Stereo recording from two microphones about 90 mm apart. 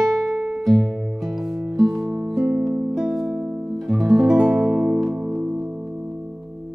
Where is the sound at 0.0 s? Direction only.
5° right (ahead or behind).